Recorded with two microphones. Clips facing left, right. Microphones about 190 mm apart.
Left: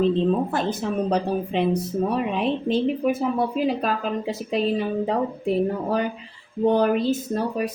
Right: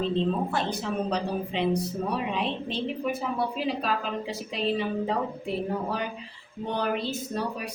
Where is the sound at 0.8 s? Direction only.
50° left (ahead or behind).